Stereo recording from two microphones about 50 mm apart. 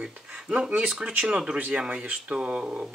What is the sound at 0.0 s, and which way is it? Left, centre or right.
Speech, right.